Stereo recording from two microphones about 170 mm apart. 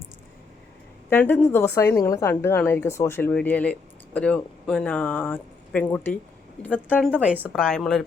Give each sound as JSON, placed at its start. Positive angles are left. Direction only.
{"t": 1.1, "sound": "a woman's voice", "side_deg": 10}
{"t": 7.1, "sound": "a woman's voice", "side_deg": -10}
{"t": 7.5, "sound": "a woman's voice", "side_deg": 5}